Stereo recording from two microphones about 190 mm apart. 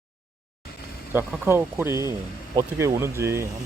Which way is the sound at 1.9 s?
20° left (ahead or behind).